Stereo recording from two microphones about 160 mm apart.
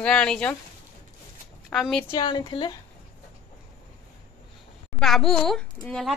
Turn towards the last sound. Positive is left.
turn(degrees=5)  # may be behind; listen again after turning